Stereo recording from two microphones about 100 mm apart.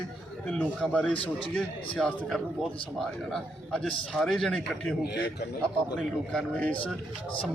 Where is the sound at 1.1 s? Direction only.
60° left (ahead or behind).